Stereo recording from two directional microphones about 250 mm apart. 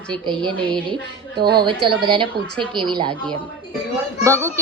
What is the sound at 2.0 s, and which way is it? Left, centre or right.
A woman's voice, centre.